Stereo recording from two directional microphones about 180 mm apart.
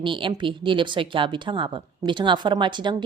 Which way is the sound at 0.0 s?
25° right (ahead or behind).